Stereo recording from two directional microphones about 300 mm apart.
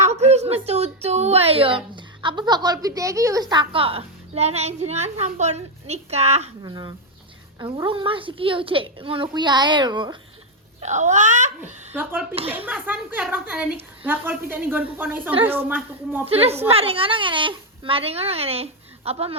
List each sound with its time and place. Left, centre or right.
0.0 s a woman's voice: right
12.5 s a woman's voice: centre
16.2 s a woman's voice: centre